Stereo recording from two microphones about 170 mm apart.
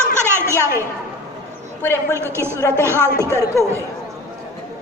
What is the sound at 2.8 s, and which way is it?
Speech, 15° right (ahead or behind).